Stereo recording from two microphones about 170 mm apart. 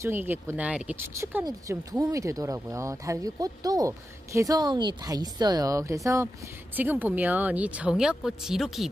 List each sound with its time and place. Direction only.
0.0 s speech: 10° right (ahead or behind)